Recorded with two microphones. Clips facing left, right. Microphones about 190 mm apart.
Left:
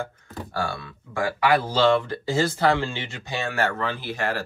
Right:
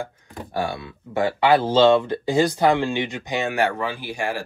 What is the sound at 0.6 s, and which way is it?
Speech, 20° right (ahead or behind).